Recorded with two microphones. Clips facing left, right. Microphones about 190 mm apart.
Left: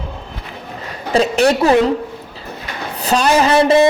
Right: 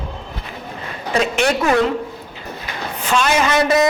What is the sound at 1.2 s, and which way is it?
Speech, 35° left (ahead or behind).